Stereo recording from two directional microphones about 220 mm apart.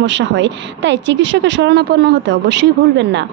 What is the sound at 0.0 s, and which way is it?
Speech, 55° right (ahead or behind).